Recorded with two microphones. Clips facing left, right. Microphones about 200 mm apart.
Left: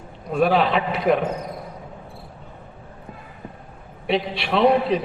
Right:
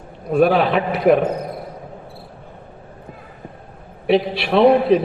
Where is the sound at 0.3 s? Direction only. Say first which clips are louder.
Right 4 dB; 55° right (ahead or behind).